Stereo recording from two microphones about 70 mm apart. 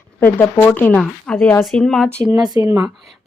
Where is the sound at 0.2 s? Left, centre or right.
Left.